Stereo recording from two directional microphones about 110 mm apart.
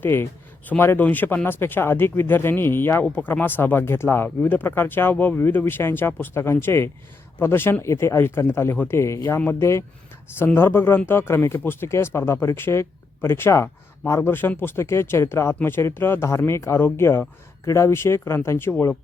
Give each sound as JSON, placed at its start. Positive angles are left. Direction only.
{"t": 0.0, "sound": "speech", "side_deg": 20}